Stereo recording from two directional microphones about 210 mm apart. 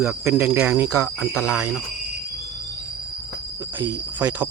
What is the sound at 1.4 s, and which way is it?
Speech, 5° right (ahead or behind).